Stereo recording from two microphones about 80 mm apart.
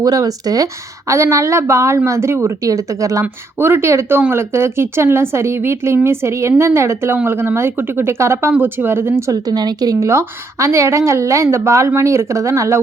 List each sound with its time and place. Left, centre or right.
0.0 s speech: right
9.3 s speech: right